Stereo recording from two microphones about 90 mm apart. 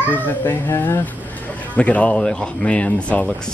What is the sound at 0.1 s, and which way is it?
Speech, 20° left (ahead or behind).